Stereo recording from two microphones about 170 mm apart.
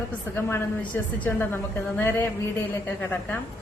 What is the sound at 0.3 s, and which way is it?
A woman's voice, 15° left (ahead or behind).